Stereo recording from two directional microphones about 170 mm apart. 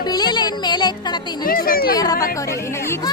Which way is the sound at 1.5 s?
60° left (ahead or behind).